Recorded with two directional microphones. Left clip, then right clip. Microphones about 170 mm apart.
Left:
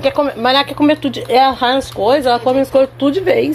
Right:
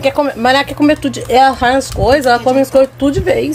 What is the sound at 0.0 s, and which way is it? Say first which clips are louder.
Speech: right 2 dB; 35° right (ahead or behind).